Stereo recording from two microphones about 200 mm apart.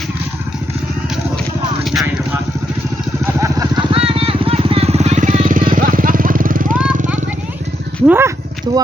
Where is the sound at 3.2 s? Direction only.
15° right (ahead or behind).